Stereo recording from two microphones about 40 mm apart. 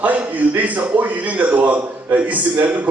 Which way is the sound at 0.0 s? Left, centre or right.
Right.